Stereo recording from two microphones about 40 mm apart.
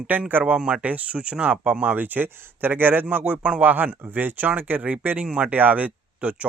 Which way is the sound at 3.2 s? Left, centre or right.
Right.